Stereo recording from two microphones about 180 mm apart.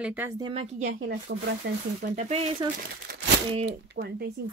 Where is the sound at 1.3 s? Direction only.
70° right (ahead or behind).